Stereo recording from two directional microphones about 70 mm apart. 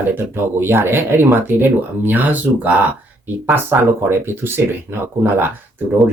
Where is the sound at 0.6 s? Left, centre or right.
Right.